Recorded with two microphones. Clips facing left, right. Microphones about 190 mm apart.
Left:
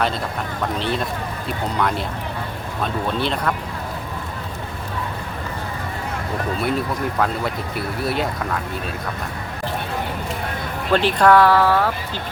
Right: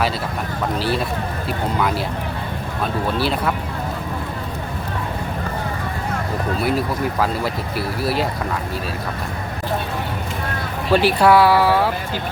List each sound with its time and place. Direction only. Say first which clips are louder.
0.8 s speech: right 3 dB; 5° right (ahead or behind)
3.2 s speech: right 2 dB; 5° right (ahead or behind)
6.6 s speech: right 3 dB; 5° right (ahead or behind)
10.9 s speech: right 1 dB; 10° right (ahead or behind)